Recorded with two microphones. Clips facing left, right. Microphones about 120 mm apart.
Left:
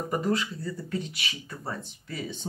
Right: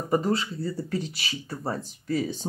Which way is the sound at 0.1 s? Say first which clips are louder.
Right 4 dB; 30° right (ahead or behind).